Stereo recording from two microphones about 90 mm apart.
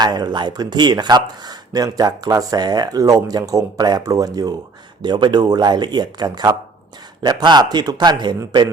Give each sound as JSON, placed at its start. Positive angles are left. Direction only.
{"t": 0.0, "sound": "speech", "side_deg": -50}
{"t": 5.0, "sound": "speech", "side_deg": -60}